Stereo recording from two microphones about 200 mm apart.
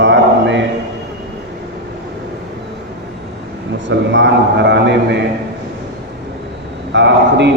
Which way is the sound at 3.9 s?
65° right (ahead or behind).